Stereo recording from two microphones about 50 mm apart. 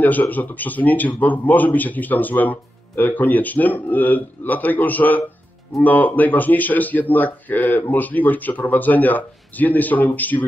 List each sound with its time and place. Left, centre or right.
0.0 s a man's voice: left